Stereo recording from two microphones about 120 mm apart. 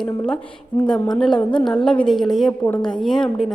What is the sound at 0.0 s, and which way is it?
A woman's voice, 5° left (ahead or behind).